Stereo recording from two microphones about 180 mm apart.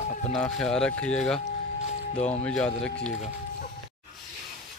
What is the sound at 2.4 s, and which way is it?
Speech, 5° left (ahead or behind).